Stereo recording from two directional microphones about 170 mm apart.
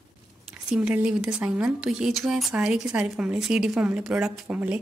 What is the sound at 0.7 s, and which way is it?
A woman's voice, 5° right (ahead or behind).